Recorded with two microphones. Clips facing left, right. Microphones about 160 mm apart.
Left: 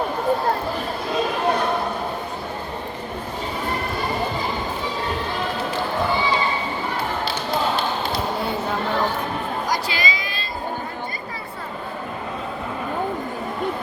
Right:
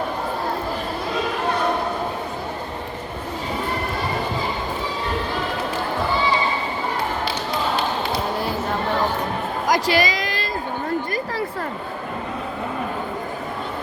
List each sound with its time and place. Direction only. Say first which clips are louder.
9.6 s music: right 9 dB; 90° right